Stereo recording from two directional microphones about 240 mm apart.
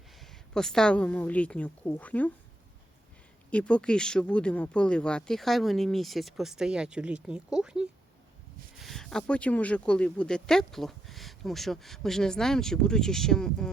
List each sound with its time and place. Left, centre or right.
0.2 s speech: centre
3.5 s speech: centre